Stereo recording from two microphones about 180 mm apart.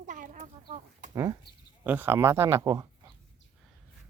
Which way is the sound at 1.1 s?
20° right (ahead or behind).